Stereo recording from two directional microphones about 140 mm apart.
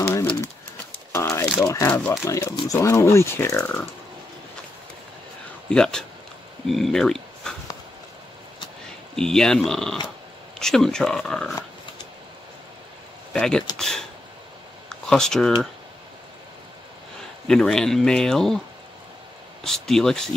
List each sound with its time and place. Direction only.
0.0 s pigeon: 20° left (ahead or behind)
1.1 s a sound: 20° left (ahead or behind)
1.6 s speech: 20° left (ahead or behind)
5.7 s speech: 5° left (ahead or behind)
9.1 s speech: 5° left (ahead or behind)
13.3 s speech: 5° left (ahead or behind)
17.5 s speech: 5° left (ahead or behind)
19.6 s speech: 5° left (ahead or behind)